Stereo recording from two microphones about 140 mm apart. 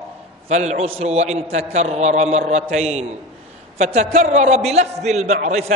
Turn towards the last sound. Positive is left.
turn(degrees=-55)  # may be behind; listen again after turning